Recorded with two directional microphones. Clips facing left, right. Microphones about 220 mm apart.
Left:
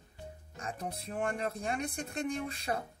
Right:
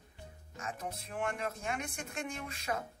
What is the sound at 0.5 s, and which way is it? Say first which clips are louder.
Speech: left 1 dB; 35° left (ahead or behind).